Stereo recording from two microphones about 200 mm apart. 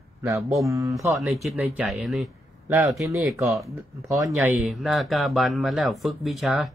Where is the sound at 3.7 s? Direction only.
15° right (ahead or behind).